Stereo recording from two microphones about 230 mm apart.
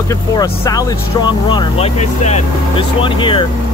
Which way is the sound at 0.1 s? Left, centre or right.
Centre.